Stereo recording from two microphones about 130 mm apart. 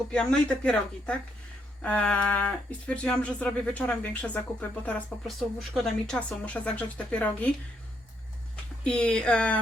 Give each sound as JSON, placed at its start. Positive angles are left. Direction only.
{"t": 0.1, "sound": "speech", "side_deg": 5}
{"t": 8.8, "sound": "speech", "side_deg": 10}